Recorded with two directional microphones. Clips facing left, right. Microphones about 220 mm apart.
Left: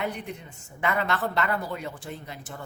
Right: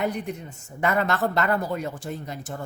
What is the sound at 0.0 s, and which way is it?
A woman's voice, 45° right (ahead or behind).